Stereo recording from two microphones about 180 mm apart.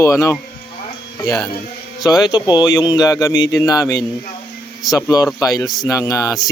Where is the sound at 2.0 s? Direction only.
20° left (ahead or behind).